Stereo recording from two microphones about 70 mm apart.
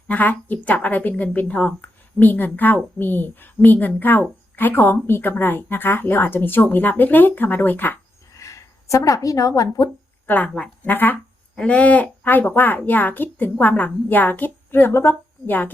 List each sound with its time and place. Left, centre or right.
0.1 s a woman's voice: left
8.3 s speech: left
10.2 s a woman's voice: left
11.5 s a woman's voice: centre; by 15.5 s left